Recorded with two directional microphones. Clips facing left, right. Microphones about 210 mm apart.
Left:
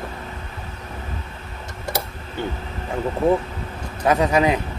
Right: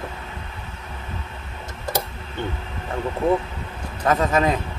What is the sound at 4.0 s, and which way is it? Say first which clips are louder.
Speech: left 2 dB; 10° left (ahead or behind).